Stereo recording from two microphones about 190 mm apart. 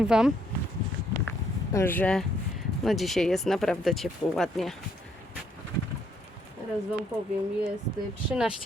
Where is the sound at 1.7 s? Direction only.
10° left (ahead or behind).